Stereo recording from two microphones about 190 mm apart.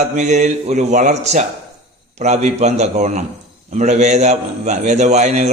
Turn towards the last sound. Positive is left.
turn(degrees=-35)  # may be behind; listen again after turning